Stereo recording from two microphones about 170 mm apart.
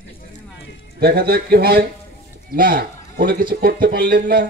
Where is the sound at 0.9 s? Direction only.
70° right (ahead or behind).